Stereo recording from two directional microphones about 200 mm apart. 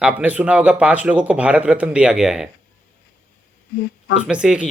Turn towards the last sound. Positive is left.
turn(degrees=-5)  # may be behind; listen again after turning